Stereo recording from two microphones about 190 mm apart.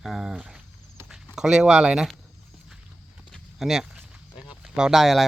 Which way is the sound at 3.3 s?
Centre (ahead or behind).